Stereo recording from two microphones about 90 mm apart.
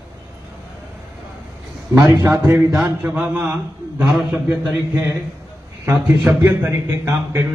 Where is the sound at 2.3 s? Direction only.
25° right (ahead or behind).